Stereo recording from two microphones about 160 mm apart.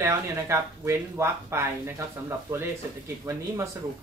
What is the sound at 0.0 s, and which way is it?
Speech, 15° right (ahead or behind).